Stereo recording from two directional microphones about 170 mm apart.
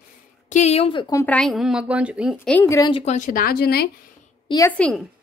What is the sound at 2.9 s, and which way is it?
Speech, 30° left (ahead or behind).